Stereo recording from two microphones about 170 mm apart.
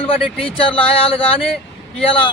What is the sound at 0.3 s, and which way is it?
A man's voice, 35° left (ahead or behind).